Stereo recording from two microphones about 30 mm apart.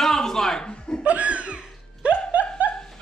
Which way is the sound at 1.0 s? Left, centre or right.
Right.